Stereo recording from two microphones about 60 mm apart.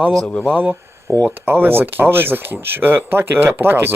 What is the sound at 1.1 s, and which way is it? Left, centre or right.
Speech, right.